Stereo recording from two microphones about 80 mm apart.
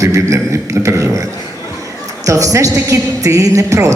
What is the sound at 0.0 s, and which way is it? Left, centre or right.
Beatboxing, right.